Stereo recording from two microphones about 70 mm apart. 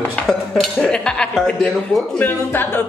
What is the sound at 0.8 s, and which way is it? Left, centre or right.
Speech, centre.